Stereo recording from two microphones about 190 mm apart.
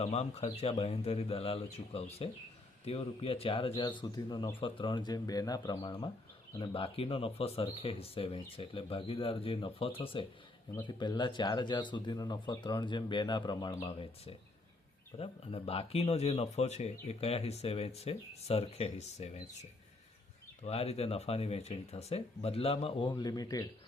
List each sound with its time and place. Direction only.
0.0 s speech: 30° left (ahead or behind)
20.7 s speech: 35° left (ahead or behind)